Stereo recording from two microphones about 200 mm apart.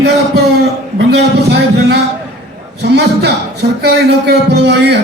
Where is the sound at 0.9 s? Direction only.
55° right (ahead or behind).